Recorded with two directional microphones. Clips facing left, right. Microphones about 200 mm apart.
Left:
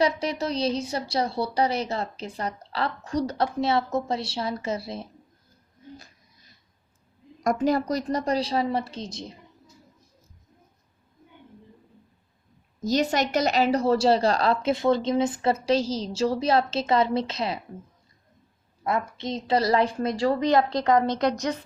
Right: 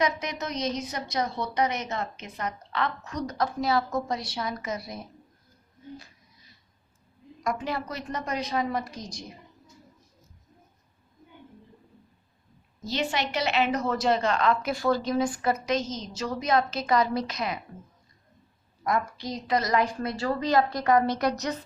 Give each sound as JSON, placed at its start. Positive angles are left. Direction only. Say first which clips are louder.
{"t": 0.0, "sound": "a woman's voice", "louder": "left 4 dB", "side_deg": 30}
{"t": 7.4, "sound": "a woman's voice", "louder": "left 8 dB", "side_deg": 40}
{"t": 12.8, "sound": "a woman's voice", "louder": "left 6 dB", "side_deg": 40}
{"t": 18.8, "sound": "a woman's voice", "louder": "left 1 dB", "side_deg": 25}